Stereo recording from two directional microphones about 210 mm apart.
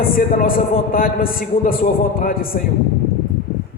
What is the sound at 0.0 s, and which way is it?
A man's voice, 40° left (ahead or behind).